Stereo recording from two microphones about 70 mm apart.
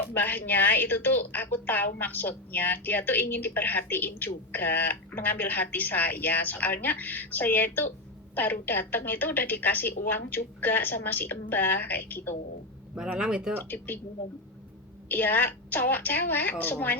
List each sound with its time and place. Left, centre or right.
0.1 s a woman's voice: left
12.9 s a man's voice: centre
13.6 s a woman's voice: left
15.1 s a woman's voice: left